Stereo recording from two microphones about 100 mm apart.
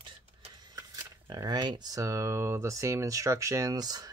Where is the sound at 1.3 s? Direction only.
45° right (ahead or behind).